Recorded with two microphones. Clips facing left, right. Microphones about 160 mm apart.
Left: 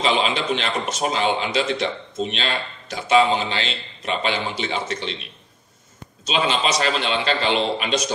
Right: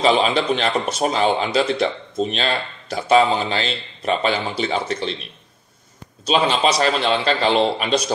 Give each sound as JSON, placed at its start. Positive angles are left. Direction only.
{"t": 0.0, "sound": "speech", "side_deg": -40}
{"t": 6.2, "sound": "speech", "side_deg": -35}